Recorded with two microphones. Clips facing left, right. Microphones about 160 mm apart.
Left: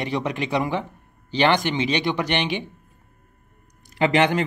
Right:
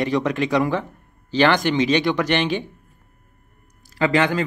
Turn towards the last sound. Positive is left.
turn(degrees=20)  # may be behind; listen again after turning